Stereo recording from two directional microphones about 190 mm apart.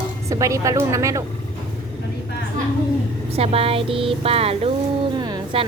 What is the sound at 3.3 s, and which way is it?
A woman's voice, 30° right (ahead or behind).